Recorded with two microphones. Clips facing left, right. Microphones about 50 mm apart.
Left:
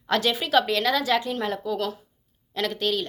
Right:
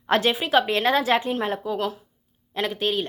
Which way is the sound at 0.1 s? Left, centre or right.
Right.